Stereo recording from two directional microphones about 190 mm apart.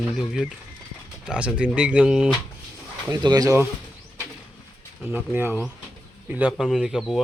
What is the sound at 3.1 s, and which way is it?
Speech, 20° right (ahead or behind).